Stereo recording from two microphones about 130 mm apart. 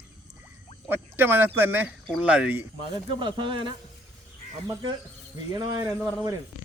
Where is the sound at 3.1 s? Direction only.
40° right (ahead or behind).